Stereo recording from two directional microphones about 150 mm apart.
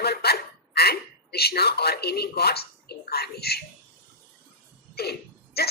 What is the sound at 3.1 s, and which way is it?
Speech, 90° left.